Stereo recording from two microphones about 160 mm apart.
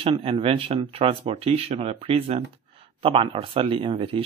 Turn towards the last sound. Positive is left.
turn(degrees=-35)  # may be behind; listen again after turning